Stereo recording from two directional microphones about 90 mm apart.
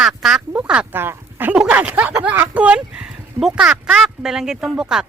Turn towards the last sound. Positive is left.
turn(degrees=-10)  # may be behind; listen again after turning